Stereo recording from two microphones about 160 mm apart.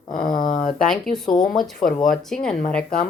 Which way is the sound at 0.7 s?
5° left (ahead or behind).